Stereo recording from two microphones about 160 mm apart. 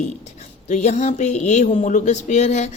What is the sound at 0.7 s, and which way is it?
Speech, 45° left (ahead or behind).